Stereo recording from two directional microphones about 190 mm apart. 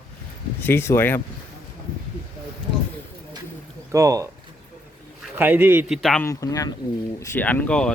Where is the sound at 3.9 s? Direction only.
15° right (ahead or behind).